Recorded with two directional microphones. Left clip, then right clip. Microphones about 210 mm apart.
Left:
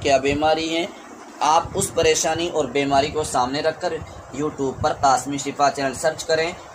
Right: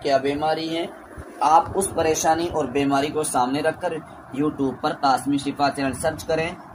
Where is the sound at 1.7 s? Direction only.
40° left (ahead or behind).